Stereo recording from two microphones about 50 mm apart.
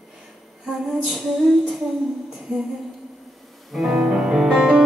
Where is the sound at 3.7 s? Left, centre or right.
Centre.